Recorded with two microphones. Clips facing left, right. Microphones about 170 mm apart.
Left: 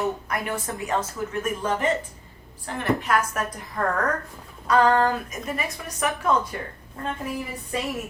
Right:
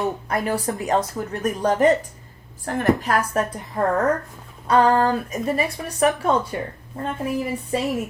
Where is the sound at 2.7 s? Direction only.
50° right (ahead or behind).